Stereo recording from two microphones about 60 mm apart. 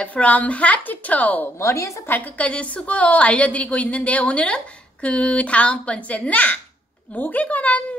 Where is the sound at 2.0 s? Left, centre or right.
Left.